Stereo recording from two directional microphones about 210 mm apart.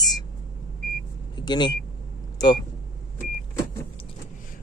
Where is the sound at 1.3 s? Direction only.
20° left (ahead or behind).